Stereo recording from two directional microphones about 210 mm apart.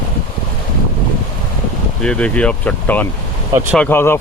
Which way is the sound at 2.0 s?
5° left (ahead or behind).